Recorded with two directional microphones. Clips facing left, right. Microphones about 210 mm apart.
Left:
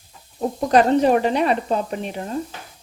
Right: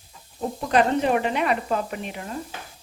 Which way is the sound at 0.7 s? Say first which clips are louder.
Left 5 dB; 40° left (ahead or behind).